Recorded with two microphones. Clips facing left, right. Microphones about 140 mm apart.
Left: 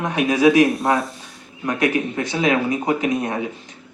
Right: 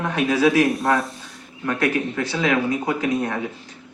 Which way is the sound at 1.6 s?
15° left (ahead or behind).